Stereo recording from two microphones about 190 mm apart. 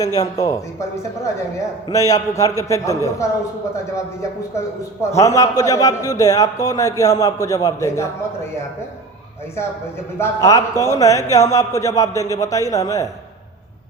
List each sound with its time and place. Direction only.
0.0 s speech: 20° left (ahead or behind)
1.9 s a man's voice: 20° left (ahead or behind)
10.2 s a man's voice: 15° left (ahead or behind)